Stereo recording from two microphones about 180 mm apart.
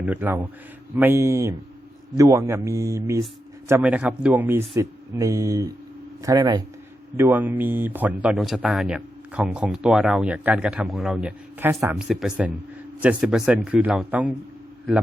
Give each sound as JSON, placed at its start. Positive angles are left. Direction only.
{"t": 0.0, "sound": "speech", "side_deg": -10}
{"t": 7.2, "sound": "speech", "side_deg": -10}